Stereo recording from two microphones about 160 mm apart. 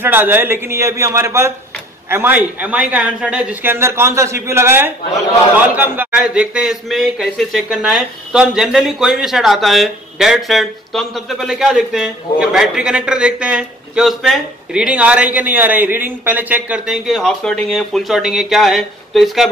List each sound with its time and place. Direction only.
0.0 s a man's voice: 15° right (ahead or behind)